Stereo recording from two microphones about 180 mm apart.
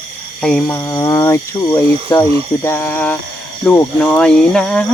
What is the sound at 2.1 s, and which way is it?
Speech, 20° left (ahead or behind).